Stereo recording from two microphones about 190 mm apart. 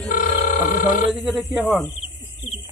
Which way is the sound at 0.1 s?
50° left (ahead or behind).